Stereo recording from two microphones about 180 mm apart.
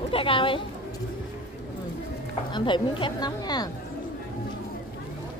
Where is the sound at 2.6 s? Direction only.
25° left (ahead or behind).